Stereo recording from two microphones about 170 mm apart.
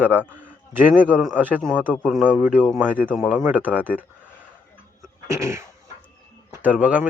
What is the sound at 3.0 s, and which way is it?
Speech, centre (ahead or behind).